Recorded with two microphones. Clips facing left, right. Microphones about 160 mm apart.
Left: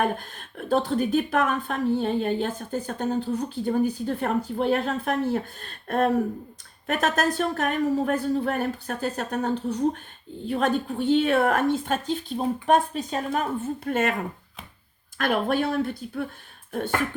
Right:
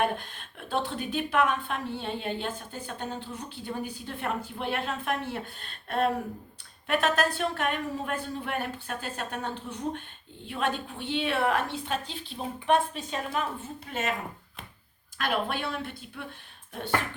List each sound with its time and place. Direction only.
0.0 s a woman's voice: 45° left (ahead or behind)
15.2 s speech: 45° left (ahead or behind)